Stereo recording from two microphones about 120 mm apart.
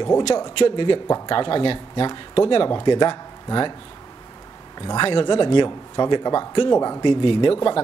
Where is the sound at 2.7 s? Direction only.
30° left (ahead or behind).